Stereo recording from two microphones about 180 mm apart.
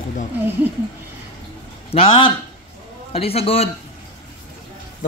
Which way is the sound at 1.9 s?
30° left (ahead or behind).